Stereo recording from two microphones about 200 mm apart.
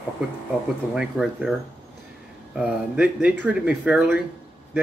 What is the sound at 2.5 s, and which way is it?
Speech, 5° right (ahead or behind).